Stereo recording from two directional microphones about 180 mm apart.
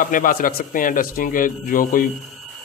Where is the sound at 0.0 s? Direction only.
50° left (ahead or behind).